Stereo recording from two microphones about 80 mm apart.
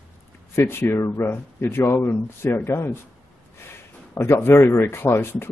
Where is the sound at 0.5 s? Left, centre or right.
Left.